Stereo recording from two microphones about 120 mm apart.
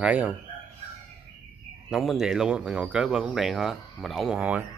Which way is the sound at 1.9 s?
5° right (ahead or behind).